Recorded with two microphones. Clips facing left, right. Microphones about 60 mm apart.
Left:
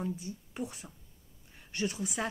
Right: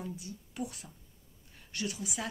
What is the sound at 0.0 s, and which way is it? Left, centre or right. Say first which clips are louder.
Speech: left 5 dB; left.